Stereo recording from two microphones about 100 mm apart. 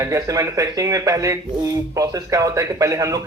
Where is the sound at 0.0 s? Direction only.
35° right (ahead or behind).